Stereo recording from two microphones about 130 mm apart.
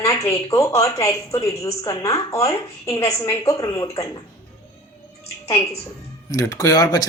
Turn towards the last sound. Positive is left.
turn(degrees=30)  # may be behind; listen again after turning